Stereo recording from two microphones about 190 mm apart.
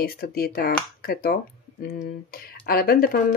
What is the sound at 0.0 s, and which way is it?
Speech, 55° left (ahead or behind).